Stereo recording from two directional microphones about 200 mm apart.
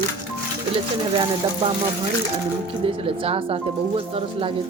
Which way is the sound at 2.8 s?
25° right (ahead or behind).